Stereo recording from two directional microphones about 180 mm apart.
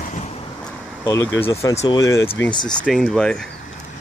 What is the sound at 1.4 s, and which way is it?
Speech, 15° left (ahead or behind).